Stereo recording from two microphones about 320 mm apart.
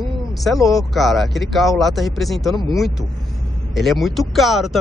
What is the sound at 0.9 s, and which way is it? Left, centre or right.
Speech, centre.